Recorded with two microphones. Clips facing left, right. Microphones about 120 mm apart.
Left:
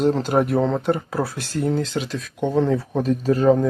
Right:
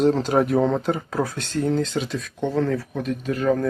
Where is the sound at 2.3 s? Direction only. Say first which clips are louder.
Left 3 dB; 15° left (ahead or behind).